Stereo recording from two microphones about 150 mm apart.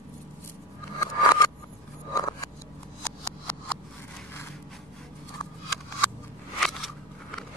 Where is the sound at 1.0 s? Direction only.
25° left (ahead or behind).